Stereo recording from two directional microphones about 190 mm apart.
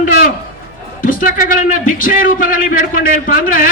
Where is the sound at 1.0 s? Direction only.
50° left (ahead or behind).